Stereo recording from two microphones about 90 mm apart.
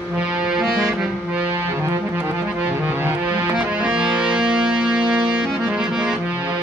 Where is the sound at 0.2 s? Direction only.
15° right (ahead or behind).